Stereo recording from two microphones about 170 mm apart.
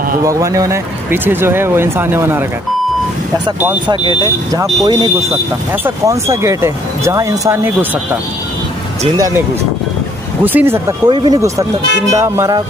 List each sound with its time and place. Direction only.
0.2 s speech: 20° right (ahead or behind)
4.8 s speech: 25° right (ahead or behind)
10.4 s speech: 10° right (ahead or behind)